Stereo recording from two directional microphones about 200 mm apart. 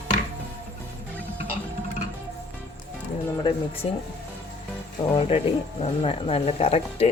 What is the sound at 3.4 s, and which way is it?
Speech, 30° left (ahead or behind).